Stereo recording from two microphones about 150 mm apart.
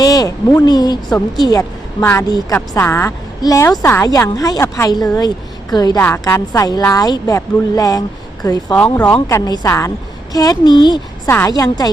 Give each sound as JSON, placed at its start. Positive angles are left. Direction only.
{"t": 0.0, "sound": "a sound", "side_deg": 25}
{"t": 0.6, "sound": "a woman's voice", "side_deg": 25}
{"t": 6.0, "sound": "a woman's voice", "side_deg": 15}
{"t": 8.7, "sound": "speech", "side_deg": 5}
{"t": 9.1, "sound": "a woman's voice", "side_deg": 25}
{"t": 11.3, "sound": "a woman's voice", "side_deg": 20}